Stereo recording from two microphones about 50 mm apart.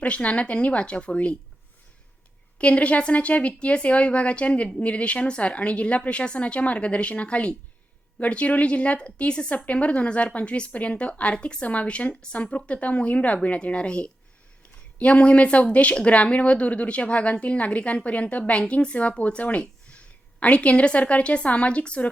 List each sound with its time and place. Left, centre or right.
0.0 s speech: left
2.6 s speech: left